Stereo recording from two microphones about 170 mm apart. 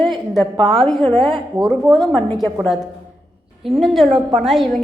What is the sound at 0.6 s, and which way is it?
Speech, centre (ahead or behind).